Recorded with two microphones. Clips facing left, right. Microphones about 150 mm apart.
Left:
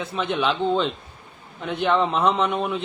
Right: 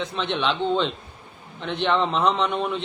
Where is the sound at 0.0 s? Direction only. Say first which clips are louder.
Left 1 dB; 5° left (ahead or behind).